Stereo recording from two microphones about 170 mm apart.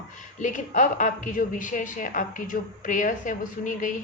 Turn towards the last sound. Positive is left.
turn(degrees=50)  # may be behind; listen again after turning